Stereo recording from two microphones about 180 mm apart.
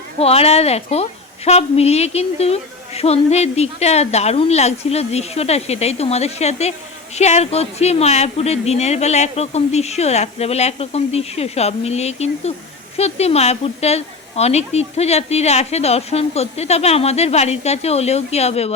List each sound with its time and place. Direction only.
0.2 s a woman's voice: 35° left (ahead or behind)